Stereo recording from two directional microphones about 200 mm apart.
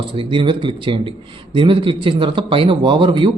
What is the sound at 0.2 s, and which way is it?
Speech, 25° right (ahead or behind).